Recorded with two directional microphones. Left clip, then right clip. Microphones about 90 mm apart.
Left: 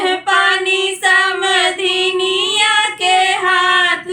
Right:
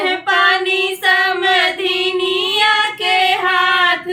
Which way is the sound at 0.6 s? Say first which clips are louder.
Left 1 dB; 20° left (ahead or behind).